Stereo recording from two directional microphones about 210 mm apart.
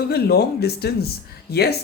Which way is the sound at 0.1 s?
50° left (ahead or behind).